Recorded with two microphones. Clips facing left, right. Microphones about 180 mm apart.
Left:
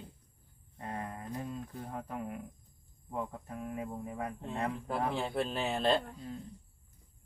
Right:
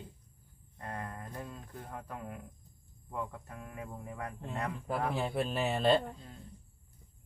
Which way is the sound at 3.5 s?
20° left (ahead or behind).